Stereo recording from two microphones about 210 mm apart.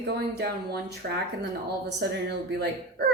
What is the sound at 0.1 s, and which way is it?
Speech, 50° right (ahead or behind).